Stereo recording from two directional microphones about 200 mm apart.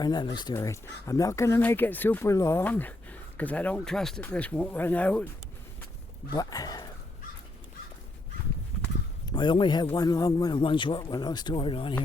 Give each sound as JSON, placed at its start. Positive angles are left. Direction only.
{"t": 0.0, "sound": "speech", "side_deg": 20}
{"t": 6.3, "sound": "speech", "side_deg": 20}
{"t": 9.3, "sound": "a man's voice", "side_deg": 25}